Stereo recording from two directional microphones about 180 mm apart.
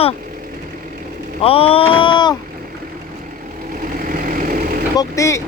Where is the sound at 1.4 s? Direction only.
30° left (ahead or behind).